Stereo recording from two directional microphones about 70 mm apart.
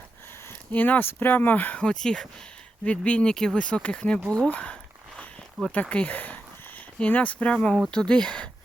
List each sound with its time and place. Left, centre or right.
0.7 s speech: left
4.4 s a sound: centre
5.6 s speech: centre
5.9 s speech: left